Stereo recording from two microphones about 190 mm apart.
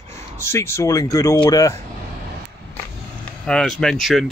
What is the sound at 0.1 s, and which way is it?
Speech, 15° left (ahead or behind).